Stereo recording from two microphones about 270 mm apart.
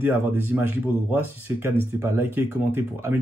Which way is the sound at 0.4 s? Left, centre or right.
Centre.